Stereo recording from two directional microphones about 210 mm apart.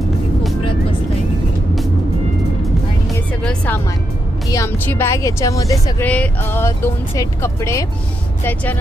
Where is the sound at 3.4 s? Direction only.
10° left (ahead or behind).